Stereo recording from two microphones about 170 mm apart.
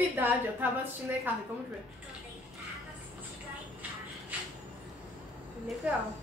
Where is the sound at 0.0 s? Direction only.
10° right (ahead or behind).